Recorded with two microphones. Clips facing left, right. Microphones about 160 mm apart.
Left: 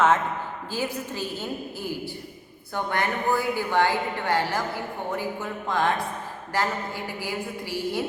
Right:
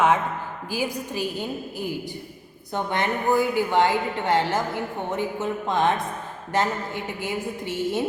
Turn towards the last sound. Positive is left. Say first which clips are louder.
# right 3 dB
turn(degrees=-20)  # may be behind; listen again after turning